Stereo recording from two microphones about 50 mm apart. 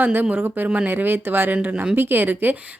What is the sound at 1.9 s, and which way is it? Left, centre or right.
Speech, right.